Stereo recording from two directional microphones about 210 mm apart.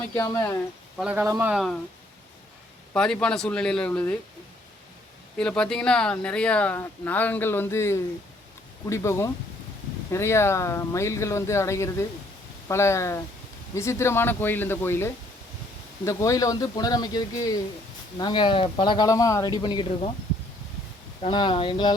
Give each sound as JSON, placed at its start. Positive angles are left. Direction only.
{"t": 0.2, "sound": "speech", "side_deg": 15}
{"t": 0.9, "sound": "speech", "side_deg": -5}
{"t": 2.9, "sound": "speech", "side_deg": 5}
{"t": 5.4, "sound": "a man's voice", "side_deg": 5}
{"t": 21.2, "sound": "a man's voice", "side_deg": 20}